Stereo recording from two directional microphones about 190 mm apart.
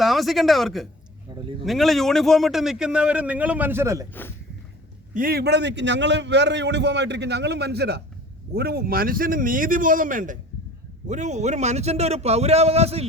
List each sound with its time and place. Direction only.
0.0 s speech: centre (ahead or behind)
1.3 s speech: 25° right (ahead or behind)
1.6 s a man's voice: centre (ahead or behind)
4.1 s speech: 10° left (ahead or behind)
5.1 s a man's voice: 50° right (ahead or behind); by 13.1 s 35° right (ahead or behind)